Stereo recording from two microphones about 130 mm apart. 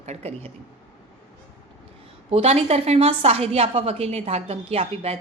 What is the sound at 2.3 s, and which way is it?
A woman's voice, 50° right (ahead or behind).